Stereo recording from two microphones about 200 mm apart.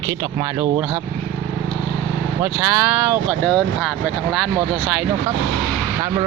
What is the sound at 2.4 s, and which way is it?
Speech, 10° right (ahead or behind).